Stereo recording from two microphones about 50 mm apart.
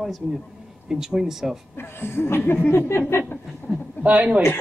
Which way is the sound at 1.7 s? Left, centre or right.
Left.